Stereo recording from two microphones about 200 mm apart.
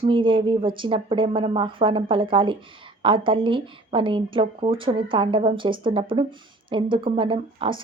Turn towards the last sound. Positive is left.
turn(degrees=-25)  # may be behind; listen again after turning